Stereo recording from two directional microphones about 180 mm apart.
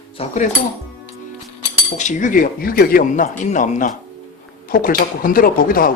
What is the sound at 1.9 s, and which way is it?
Speech, 45° left (ahead or behind).